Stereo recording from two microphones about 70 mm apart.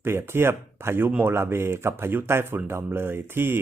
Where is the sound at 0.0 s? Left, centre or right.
Right.